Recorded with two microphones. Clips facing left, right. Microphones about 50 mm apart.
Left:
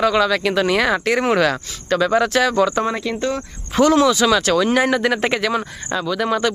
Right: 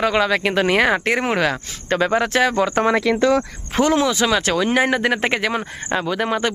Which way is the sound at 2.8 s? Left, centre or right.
Right.